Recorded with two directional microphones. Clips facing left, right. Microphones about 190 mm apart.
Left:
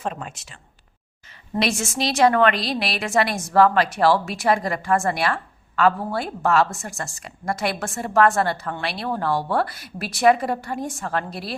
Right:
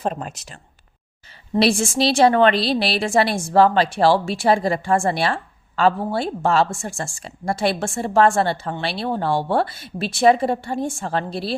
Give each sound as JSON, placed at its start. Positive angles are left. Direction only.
{"t": 0.0, "sound": "speech", "side_deg": -40}
{"t": 1.5, "sound": "a woman's voice", "side_deg": -30}